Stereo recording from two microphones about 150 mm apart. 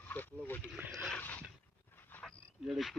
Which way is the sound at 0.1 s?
10° left (ahead or behind).